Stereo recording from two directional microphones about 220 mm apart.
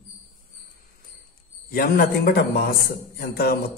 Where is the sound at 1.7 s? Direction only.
40° left (ahead or behind).